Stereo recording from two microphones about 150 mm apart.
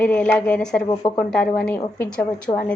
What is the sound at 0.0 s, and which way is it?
A woman's voice, 10° left (ahead or behind).